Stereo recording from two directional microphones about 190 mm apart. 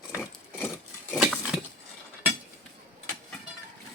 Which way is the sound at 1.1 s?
5° right (ahead or behind).